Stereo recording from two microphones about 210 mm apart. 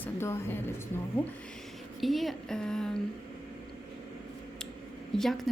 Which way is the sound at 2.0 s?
Centre (ahead or behind).